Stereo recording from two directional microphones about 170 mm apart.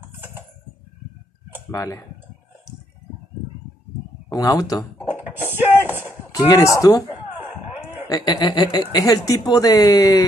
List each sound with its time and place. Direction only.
1.7 s speech: 20° left (ahead or behind)
4.3 s speech: 20° left (ahead or behind)
5.5 s a sound: 10° right (ahead or behind)
6.3 s speech: 20° left (ahead or behind)
8.1 s speech: 25° left (ahead or behind)